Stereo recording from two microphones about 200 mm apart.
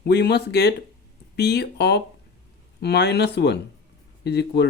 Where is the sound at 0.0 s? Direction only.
55° left (ahead or behind).